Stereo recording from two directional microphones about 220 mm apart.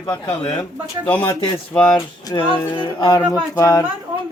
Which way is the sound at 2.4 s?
20° left (ahead or behind).